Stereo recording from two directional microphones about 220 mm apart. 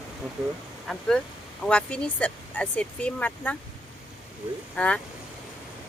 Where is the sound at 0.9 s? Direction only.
Centre (ahead or behind).